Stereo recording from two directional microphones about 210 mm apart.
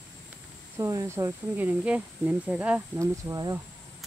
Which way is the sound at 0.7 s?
15° right (ahead or behind).